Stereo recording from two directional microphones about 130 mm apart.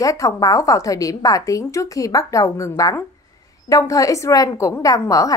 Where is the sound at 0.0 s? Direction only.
25° left (ahead or behind).